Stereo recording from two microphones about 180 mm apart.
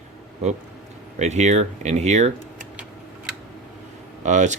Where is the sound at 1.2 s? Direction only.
40° right (ahead or behind).